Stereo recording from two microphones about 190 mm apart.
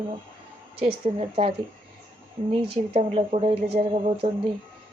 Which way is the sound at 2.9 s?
30° right (ahead or behind).